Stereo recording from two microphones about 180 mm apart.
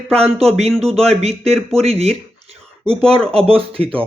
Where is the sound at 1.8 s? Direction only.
35° right (ahead or behind).